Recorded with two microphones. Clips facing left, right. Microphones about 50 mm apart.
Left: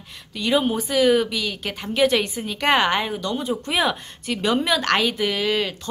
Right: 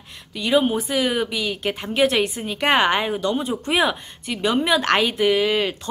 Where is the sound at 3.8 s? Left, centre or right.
Centre.